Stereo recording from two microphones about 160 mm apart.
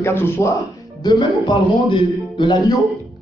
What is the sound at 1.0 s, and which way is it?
A man's voice, 30° left (ahead or behind).